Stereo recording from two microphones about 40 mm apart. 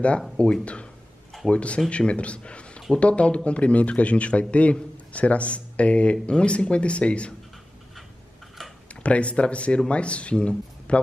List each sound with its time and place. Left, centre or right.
0.4 s a man's voice: left
9.0 s a man's voice: left